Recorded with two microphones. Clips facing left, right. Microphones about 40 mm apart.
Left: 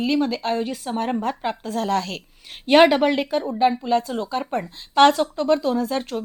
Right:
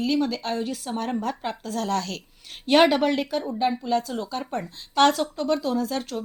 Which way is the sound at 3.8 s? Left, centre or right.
Left.